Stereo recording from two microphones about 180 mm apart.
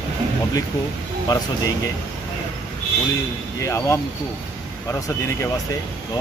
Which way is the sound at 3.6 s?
15° left (ahead or behind).